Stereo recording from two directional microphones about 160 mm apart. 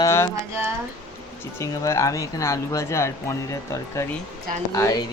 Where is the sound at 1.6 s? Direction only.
20° left (ahead or behind).